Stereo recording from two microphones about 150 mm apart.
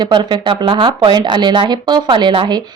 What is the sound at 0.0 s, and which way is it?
Speech, 30° right (ahead or behind).